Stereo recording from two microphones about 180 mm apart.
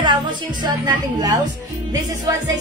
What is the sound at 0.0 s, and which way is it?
A woman's voice, 25° right (ahead or behind).